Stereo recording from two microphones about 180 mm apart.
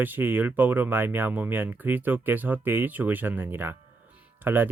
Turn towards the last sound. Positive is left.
turn(degrees=-10)  # may be behind; listen again after turning